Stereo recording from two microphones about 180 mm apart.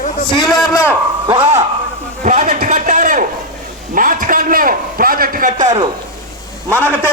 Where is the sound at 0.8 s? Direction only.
10° right (ahead or behind).